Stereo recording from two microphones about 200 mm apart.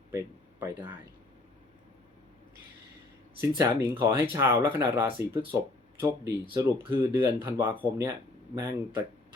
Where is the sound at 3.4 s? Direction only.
10° right (ahead or behind).